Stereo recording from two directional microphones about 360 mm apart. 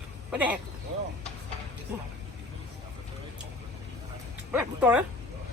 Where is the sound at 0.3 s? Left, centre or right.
Centre.